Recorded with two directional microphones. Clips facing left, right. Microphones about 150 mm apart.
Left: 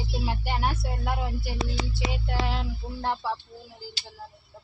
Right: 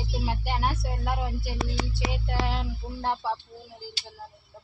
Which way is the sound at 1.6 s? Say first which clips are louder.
Even; 20° left (ahead or behind).